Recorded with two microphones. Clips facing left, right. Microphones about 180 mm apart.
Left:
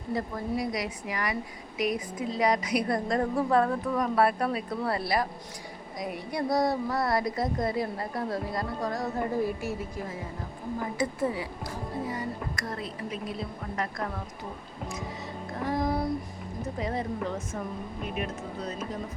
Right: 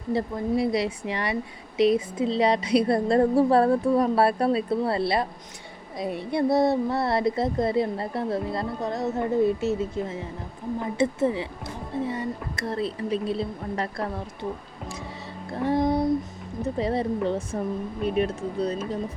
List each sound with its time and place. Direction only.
0.1 s speech: 25° right (ahead or behind)
15.6 s speech: 25° right (ahead or behind)